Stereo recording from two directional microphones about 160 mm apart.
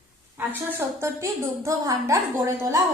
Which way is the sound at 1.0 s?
20° right (ahead or behind).